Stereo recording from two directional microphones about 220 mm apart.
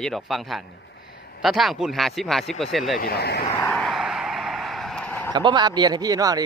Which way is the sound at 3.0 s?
45° left (ahead or behind).